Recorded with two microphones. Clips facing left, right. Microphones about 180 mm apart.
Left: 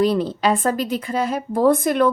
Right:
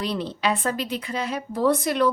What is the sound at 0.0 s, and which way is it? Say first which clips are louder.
Speech: left 8 dB; 45° left (ahead or behind).